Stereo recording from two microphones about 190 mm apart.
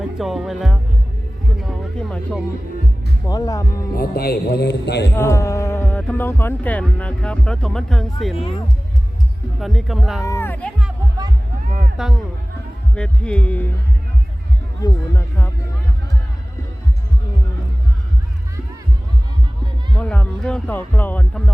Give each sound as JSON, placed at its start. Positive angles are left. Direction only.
{"t": 0.2, "sound": "speech", "side_deg": 0}
{"t": 3.2, "sound": "speech", "side_deg": 20}
{"t": 3.9, "sound": "a man's voice", "side_deg": 50}
{"t": 5.1, "sound": "speech", "side_deg": 15}
{"t": 8.4, "sound": "speech", "side_deg": 30}
{"t": 9.6, "sound": "speech", "side_deg": 0}
{"t": 10.2, "sound": "speech", "side_deg": 10}
{"t": 11.8, "sound": "music", "side_deg": 0}
{"t": 13.0, "sound": "speech", "side_deg": 5}
{"t": 14.8, "sound": "speech", "side_deg": 15}
{"t": 20.0, "sound": "speech", "side_deg": 5}